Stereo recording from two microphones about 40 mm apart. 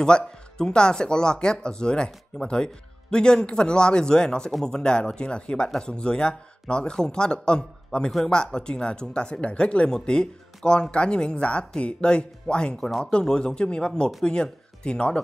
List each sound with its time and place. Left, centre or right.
0.0 s speech: centre